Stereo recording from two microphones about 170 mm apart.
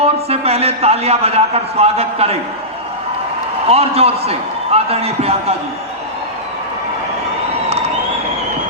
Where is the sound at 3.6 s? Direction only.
35° right (ahead or behind).